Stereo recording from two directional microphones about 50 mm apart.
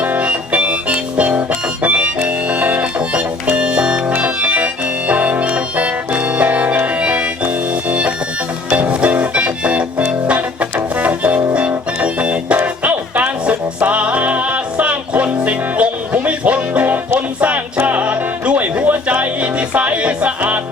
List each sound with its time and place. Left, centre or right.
0.0 s music: right